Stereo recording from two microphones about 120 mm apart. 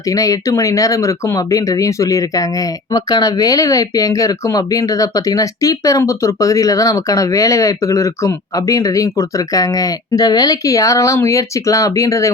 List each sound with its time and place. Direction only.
0.0 s speech: 30° left (ahead or behind)